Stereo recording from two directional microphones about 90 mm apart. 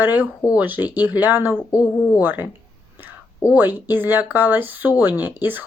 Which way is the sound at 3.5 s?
20° right (ahead or behind).